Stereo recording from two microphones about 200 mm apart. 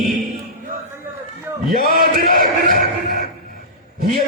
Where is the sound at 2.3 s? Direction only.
45° right (ahead or behind).